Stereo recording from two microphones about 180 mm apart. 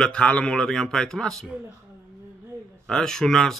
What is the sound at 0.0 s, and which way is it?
A man's voice, 5° left (ahead or behind).